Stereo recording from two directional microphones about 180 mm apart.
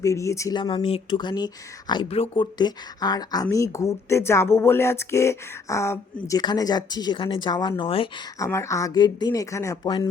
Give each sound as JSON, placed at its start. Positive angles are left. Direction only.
{"t": 0.0, "sound": "speech", "side_deg": 15}
{"t": 8.4, "sound": "speech", "side_deg": 15}